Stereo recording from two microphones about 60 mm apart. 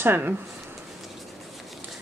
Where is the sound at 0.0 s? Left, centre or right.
Right.